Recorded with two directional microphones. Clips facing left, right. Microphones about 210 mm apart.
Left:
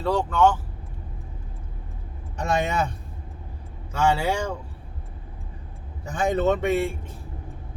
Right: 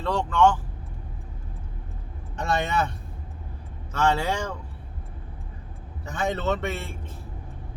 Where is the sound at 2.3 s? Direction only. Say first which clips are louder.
Left 1 dB; 15° left (ahead or behind).